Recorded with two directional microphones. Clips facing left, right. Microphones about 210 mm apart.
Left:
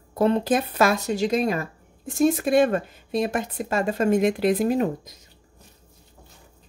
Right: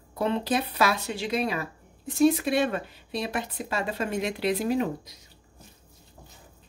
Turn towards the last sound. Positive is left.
turn(degrees=45)  # may be behind; listen again after turning